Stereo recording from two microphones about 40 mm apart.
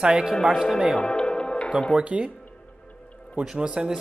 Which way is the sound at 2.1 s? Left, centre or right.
Right.